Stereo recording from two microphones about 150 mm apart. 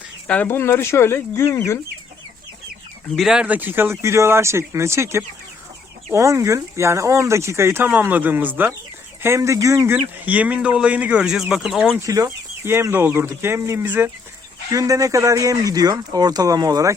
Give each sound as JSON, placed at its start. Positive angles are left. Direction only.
{"t": 0.3, "sound": "speech", "side_deg": 10}
{"t": 3.2, "sound": "speech", "side_deg": -5}
{"t": 11.9, "sound": "speech", "side_deg": -20}